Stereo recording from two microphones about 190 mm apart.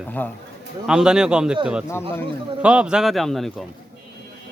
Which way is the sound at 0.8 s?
5° right (ahead or behind).